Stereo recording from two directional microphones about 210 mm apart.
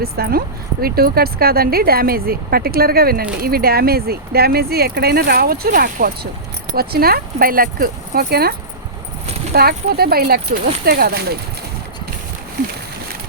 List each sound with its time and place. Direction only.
0.0 s speech: 45° right (ahead or behind)